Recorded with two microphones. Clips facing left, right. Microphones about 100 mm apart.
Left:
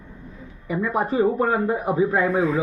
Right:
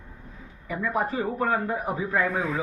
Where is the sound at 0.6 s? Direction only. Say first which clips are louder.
Left 4 dB; 20° left (ahead or behind).